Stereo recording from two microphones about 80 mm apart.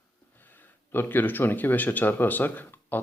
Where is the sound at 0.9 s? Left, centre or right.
Left.